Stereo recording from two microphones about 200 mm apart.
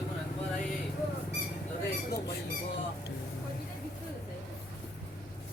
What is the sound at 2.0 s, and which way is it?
Squawk, 55° left (ahead or behind).